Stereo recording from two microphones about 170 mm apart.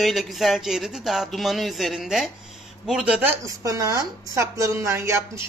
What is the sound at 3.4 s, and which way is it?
A woman's voice, 20° right (ahead or behind).